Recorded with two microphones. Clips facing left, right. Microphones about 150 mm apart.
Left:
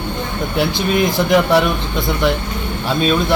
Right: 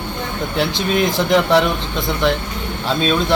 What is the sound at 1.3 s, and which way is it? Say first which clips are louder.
Speech: left 1 dB; 10° left (ahead or behind).